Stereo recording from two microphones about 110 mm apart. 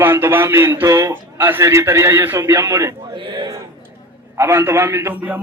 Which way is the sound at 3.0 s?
45° right (ahead or behind).